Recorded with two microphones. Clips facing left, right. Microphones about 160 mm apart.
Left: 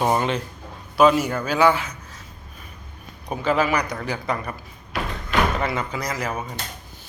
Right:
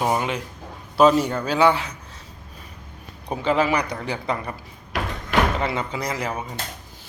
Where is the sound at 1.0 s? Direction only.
30° right (ahead or behind).